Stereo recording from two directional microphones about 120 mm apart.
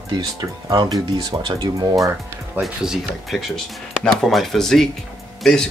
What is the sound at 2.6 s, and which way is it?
Speech, 5° right (ahead or behind).